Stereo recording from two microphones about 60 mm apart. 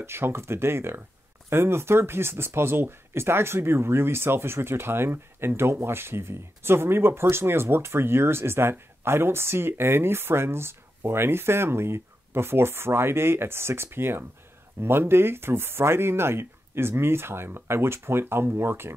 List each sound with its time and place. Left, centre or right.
0.0 s speech: right